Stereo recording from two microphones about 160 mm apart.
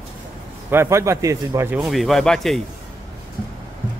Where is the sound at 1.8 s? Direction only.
Centre (ahead or behind).